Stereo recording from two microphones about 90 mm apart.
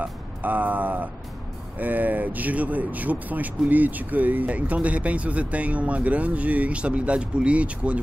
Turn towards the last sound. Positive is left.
turn(degrees=-15)  # may be behind; listen again after turning